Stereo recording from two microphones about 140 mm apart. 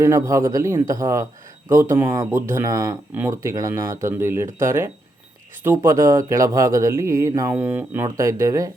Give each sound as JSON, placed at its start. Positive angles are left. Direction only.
{"t": 0.0, "sound": "speech", "side_deg": -20}
{"t": 7.6, "sound": "speech", "side_deg": -10}
{"t": 8.0, "sound": "speech", "side_deg": -25}